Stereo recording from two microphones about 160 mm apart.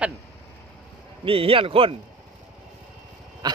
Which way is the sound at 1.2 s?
35° right (ahead or behind).